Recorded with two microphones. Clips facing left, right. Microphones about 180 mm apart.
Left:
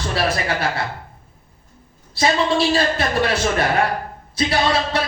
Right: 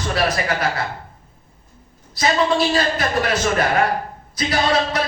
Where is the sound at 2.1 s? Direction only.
30° left (ahead or behind).